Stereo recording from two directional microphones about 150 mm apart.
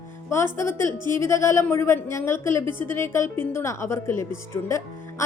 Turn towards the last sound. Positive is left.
turn(degrees=20)  # may be behind; listen again after turning